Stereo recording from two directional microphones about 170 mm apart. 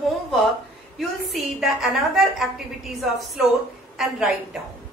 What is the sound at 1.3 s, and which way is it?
A woman's voice, centre (ahead or behind).